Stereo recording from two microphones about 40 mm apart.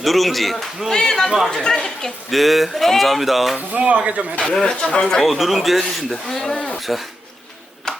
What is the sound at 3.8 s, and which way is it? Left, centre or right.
Speech, right.